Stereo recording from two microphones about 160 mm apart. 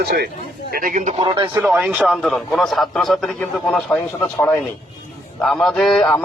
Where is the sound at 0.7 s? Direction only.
55° right (ahead or behind).